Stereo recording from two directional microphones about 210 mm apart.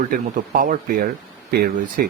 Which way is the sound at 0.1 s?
40° right (ahead or behind).